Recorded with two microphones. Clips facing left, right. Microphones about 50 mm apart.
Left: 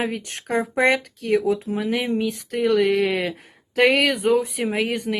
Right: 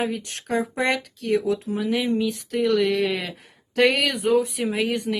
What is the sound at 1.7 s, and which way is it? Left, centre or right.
Speech, left.